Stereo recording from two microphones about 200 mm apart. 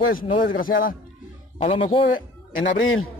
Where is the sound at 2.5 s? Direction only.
40° left (ahead or behind).